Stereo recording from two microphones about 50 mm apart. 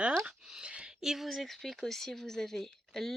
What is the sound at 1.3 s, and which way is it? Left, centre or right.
Speech, centre.